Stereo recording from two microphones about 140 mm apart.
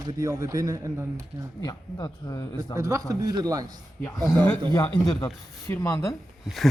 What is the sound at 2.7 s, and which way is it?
Speech, 20° right (ahead or behind).